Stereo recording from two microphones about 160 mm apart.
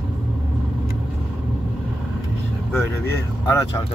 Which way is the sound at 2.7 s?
15° left (ahead or behind).